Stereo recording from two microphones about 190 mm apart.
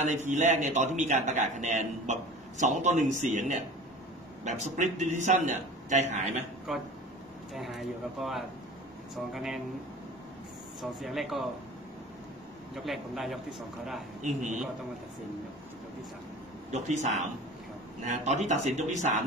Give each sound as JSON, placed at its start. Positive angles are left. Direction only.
{"t": 0.0, "sound": "a man's voice", "side_deg": -40}
{"t": 6.7, "sound": "speech", "side_deg": 0}
{"t": 10.8, "sound": "speech", "side_deg": 0}
{"t": 12.7, "sound": "speech", "side_deg": 0}
{"t": 14.2, "sound": "a man's voice", "side_deg": -40}
{"t": 16.7, "sound": "a man's voice", "side_deg": -40}